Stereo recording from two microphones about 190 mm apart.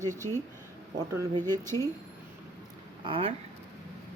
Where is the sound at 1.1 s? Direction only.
20° right (ahead or behind).